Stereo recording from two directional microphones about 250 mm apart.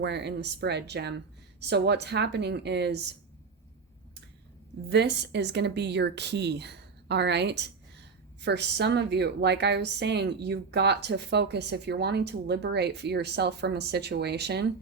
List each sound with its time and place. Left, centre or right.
0.0 s a woman's voice: right
4.9 s a woman's voice: right